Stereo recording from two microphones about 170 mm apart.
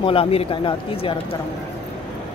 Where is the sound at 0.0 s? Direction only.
35° left (ahead or behind).